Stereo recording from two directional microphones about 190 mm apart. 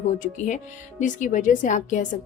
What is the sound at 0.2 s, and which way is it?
A woman's voice, 40° left (ahead or behind).